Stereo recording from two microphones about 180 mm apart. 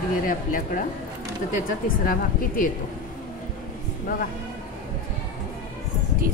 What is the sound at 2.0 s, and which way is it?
Speech, 50° left (ahead or behind).